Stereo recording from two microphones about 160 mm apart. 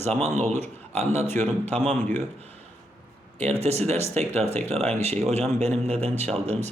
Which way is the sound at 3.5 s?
40° right (ahead or behind).